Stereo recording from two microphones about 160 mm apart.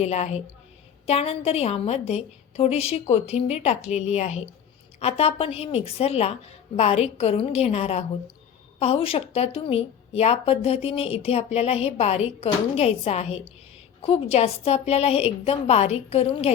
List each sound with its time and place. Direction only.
0.0 s a woman's voice: 45° left (ahead or behind)